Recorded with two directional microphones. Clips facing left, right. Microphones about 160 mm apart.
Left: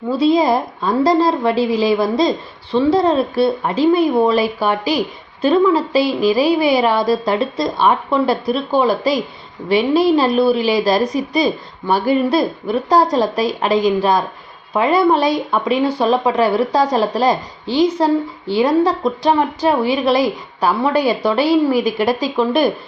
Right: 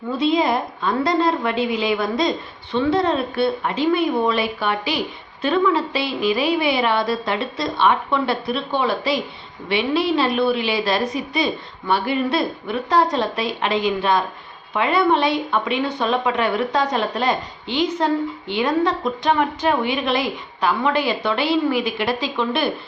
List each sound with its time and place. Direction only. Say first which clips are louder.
0.1 s speech: left 5 dB; 35° left (ahead or behind)